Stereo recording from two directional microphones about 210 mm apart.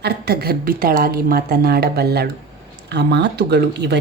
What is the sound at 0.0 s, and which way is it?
A woman's voice, 50° right (ahead or behind).